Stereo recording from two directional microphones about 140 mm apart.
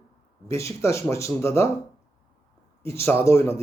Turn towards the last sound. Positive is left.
turn(degrees=20)  # may be behind; listen again after turning